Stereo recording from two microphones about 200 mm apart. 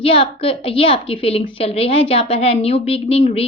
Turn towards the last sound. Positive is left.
turn(degrees=30)  # may be behind; listen again after turning